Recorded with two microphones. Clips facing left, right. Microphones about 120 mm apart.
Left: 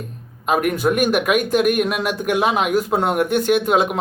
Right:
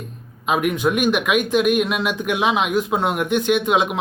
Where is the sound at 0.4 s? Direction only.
45° left (ahead or behind).